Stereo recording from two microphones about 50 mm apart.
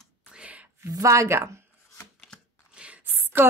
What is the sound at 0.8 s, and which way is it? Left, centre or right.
Speech, right.